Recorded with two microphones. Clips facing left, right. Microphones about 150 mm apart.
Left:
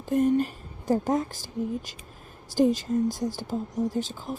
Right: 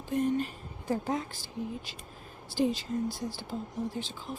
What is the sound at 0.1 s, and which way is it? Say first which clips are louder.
Speech: left 6 dB; 45° left (ahead or behind).